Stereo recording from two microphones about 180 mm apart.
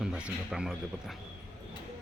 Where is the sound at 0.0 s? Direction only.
5° right (ahead or behind).